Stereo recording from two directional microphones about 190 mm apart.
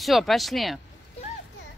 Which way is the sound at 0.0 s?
Centre (ahead or behind).